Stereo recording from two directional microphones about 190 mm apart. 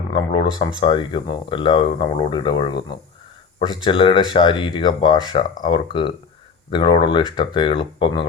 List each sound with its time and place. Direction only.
0.1 s speech: 25° left (ahead or behind)